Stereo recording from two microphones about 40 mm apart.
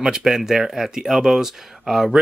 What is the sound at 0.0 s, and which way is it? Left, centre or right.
Speech, centre.